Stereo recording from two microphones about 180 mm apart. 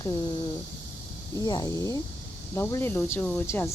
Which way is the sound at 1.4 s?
20° left (ahead or behind).